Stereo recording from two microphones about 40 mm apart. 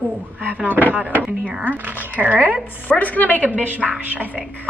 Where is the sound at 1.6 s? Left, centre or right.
Right.